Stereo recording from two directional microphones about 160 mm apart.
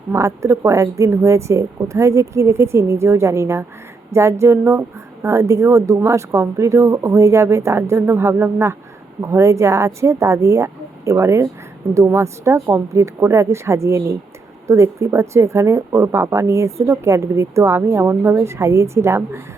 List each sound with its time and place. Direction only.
0.1 s a woman's voice: 20° right (ahead or behind)